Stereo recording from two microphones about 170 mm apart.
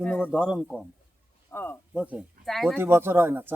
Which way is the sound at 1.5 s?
10° left (ahead or behind).